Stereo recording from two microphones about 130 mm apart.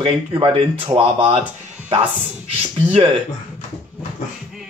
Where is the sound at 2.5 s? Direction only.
45° right (ahead or behind).